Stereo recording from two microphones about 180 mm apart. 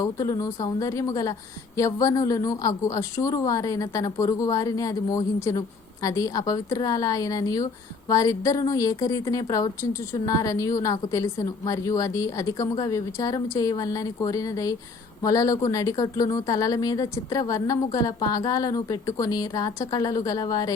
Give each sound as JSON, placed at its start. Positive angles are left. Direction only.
{"t": 0.0, "sound": "a woman's voice", "side_deg": 15}